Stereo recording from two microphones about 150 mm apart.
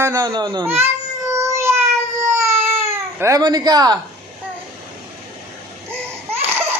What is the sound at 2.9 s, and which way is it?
Speech, 20° right (ahead or behind).